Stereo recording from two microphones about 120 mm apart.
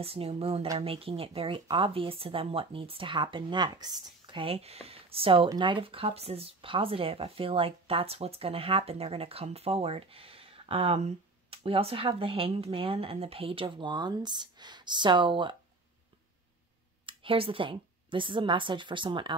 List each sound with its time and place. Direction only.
0.0 s speech: 55° right (ahead or behind)
17.0 s a woman's voice: 45° right (ahead or behind)